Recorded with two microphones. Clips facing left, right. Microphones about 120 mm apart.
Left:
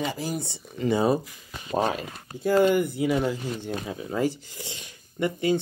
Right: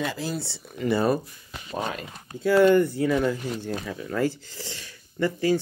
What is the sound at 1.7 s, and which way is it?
Speech, 35° left (ahead or behind).